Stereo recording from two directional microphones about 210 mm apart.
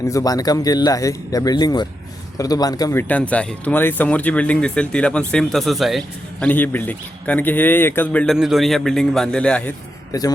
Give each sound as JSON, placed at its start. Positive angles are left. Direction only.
{"t": 0.0, "sound": "a man's voice", "side_deg": 15}